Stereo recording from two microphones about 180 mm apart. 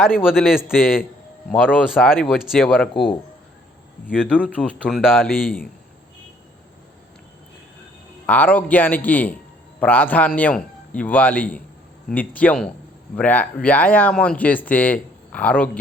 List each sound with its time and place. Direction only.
0.3 s speech: centre (ahead or behind)
5.3 s speech: 55° left (ahead or behind)
8.3 s speech: 10° left (ahead or behind)